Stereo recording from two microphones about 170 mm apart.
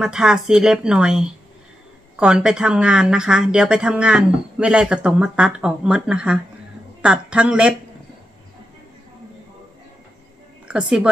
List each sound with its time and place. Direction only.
0.0 s a woman's voice: 5° right (ahead or behind)
10.7 s a woman's voice: 5° right (ahead or behind)